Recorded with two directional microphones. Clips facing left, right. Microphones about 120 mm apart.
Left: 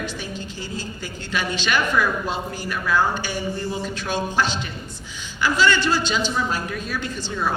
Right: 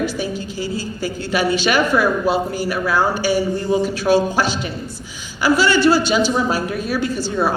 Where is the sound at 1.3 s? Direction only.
10° right (ahead or behind).